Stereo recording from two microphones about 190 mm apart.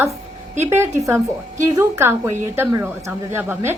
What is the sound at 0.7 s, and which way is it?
A woman's voice, 15° right (ahead or behind).